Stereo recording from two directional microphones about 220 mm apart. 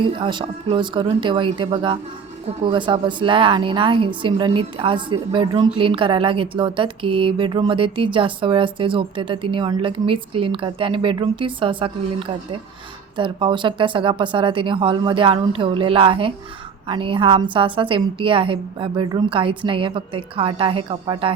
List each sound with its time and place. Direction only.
0.0 s speech: 20° right (ahead or behind)